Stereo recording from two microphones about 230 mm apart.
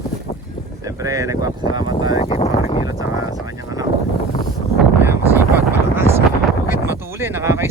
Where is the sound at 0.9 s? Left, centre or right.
Centre.